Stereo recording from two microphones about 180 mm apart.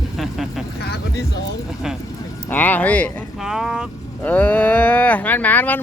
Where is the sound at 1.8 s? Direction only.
Centre (ahead or behind).